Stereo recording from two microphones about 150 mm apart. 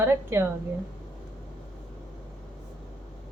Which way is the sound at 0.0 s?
15° right (ahead or behind).